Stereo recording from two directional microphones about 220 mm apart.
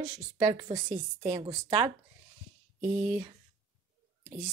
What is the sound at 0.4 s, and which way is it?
A woman's voice, 25° right (ahead or behind).